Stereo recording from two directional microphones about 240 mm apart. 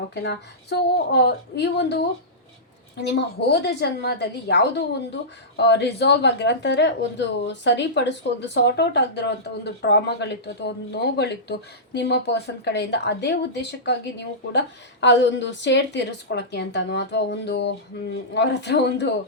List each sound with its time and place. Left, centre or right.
0.1 s a woman's voice: left
3.1 s a woman's voice: left